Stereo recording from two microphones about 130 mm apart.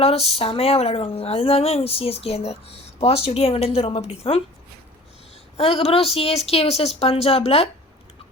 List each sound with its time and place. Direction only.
0.0 s speech: 50° left (ahead or behind)
5.5 s speech: 50° left (ahead or behind)